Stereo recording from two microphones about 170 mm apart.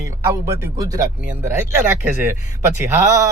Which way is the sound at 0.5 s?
15° right (ahead or behind).